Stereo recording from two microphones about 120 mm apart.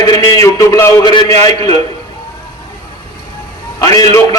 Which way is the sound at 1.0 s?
35° left (ahead or behind).